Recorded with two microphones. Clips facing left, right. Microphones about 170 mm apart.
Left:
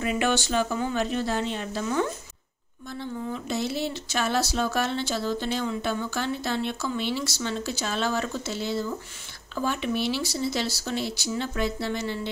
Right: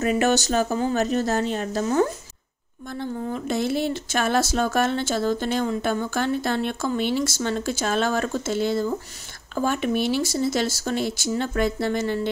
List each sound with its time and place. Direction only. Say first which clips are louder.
0.0 s speech: right 5 dB; 45° right (ahead or behind)